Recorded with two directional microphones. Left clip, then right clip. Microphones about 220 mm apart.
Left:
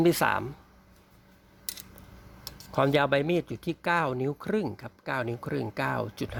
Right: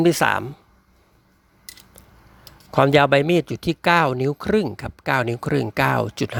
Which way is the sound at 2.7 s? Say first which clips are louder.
Right 9 dB; 25° right (ahead or behind).